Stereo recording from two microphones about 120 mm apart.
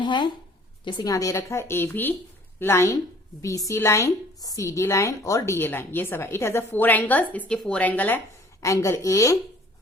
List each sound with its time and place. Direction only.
0.0 s a woman's voice: 40° left (ahead or behind); by 8.2 s 15° left (ahead or behind)
8.6 s a woman's voice: 25° left (ahead or behind)